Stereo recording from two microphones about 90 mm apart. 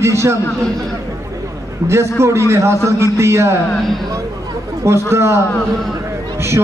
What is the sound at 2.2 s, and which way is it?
A man's voice, 30° right (ahead or behind).